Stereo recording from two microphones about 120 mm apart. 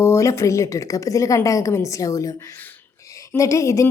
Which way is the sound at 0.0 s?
25° left (ahead or behind).